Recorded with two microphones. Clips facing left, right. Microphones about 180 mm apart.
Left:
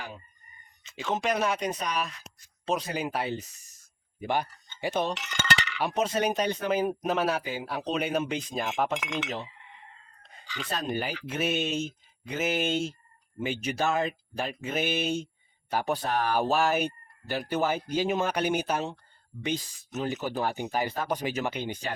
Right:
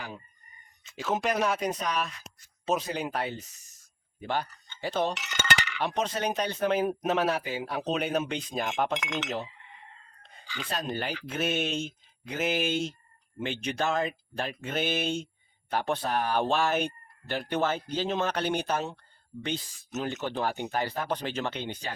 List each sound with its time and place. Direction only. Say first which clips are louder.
0.9 s speech: even; 5° right (ahead or behind); by 5.0 s 15° left (ahead or behind)
5.1 s dishes: even; 5° right (ahead or behind)
5.8 s speech: left 4 dB; 5° left (ahead or behind)
10.8 s speech: left 2 dB; 10° left (ahead or behind)
20.0 s speech: left 1 dB; 10° left (ahead or behind)